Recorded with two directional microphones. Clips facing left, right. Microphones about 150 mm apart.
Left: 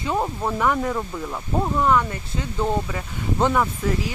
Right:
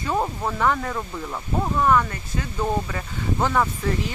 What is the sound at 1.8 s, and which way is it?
Speech, 15° left (ahead or behind).